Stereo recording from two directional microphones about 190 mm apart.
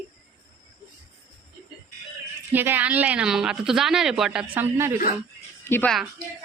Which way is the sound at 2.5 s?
10° right (ahead or behind).